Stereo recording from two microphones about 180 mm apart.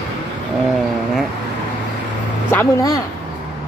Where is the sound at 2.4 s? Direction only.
15° left (ahead or behind).